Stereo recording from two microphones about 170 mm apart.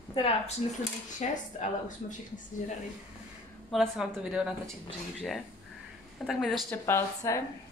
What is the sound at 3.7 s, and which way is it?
Speech, centre (ahead or behind).